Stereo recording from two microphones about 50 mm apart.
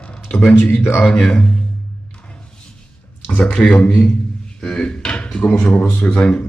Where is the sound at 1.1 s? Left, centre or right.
Centre.